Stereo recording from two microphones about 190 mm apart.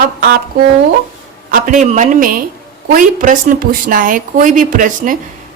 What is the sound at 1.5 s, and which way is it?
Speech, 45° right (ahead or behind).